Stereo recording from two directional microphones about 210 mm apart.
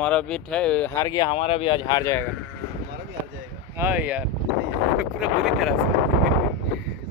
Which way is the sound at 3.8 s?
10° right (ahead or behind).